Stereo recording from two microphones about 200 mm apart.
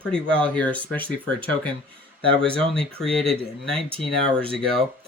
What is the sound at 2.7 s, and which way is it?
Speech, 5° left (ahead or behind).